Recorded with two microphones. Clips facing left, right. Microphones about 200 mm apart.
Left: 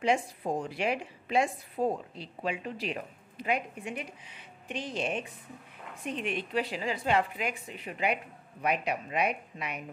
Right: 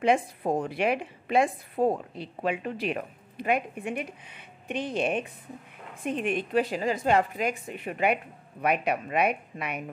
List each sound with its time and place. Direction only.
0.0 s a woman's voice: 55° right (ahead or behind)